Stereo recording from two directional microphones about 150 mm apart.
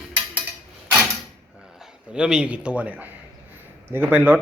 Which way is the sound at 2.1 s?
5° right (ahead or behind).